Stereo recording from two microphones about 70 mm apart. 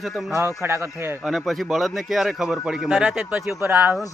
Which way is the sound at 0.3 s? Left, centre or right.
Right.